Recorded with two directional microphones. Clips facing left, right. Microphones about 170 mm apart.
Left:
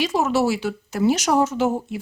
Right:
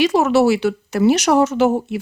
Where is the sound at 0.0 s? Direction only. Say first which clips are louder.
Right 6 dB; 70° right (ahead or behind).